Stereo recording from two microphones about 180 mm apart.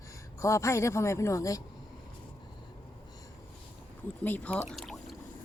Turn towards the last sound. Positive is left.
turn(degrees=0)  # may be behind; listen again after turning